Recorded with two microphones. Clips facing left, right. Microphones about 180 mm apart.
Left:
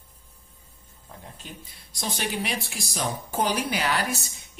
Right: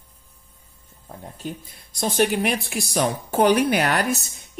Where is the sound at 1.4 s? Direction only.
45° right (ahead or behind).